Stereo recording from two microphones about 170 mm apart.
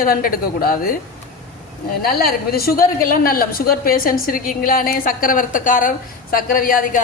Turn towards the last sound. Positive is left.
turn(degrees=55)  # may be behind; listen again after turning